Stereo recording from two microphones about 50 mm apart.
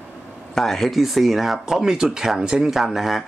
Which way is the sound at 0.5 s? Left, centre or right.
Centre.